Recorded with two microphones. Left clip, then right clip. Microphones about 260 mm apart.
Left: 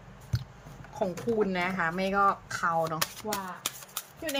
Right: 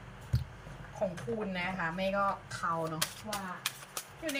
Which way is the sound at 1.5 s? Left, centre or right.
Centre.